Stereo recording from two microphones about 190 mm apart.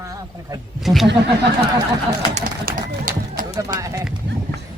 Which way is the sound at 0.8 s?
Centre (ahead or behind).